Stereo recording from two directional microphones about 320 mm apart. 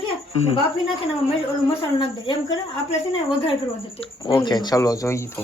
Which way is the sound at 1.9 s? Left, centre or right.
Centre.